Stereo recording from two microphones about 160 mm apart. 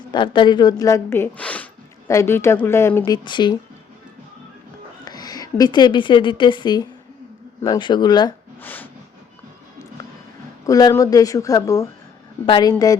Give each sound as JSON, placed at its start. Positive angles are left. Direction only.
{"t": 0.1, "sound": "speech", "side_deg": 30}
{"t": 3.2, "sound": "speech", "side_deg": 30}
{"t": 5.0, "sound": "a woman's voice", "side_deg": 25}
{"t": 8.6, "sound": "a sound", "side_deg": 10}
{"t": 10.7, "sound": "speech", "side_deg": 20}